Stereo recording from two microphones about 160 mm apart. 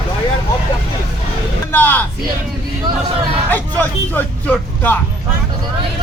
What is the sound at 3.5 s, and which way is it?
Vehicle, 10° left (ahead or behind).